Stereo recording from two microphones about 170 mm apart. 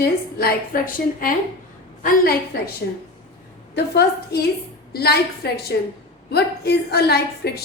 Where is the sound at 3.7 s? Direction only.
75° left (ahead or behind).